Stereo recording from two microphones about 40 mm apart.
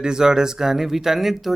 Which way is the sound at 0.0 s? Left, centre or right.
Centre.